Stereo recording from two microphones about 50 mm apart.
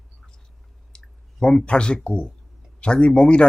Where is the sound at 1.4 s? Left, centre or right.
Centre.